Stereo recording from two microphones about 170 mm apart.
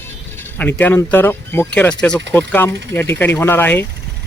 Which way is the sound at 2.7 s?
90° right.